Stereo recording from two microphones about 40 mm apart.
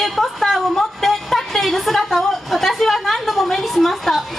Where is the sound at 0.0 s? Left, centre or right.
Centre.